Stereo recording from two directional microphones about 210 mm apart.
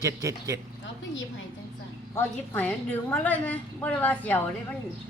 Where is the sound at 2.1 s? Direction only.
10° left (ahead or behind).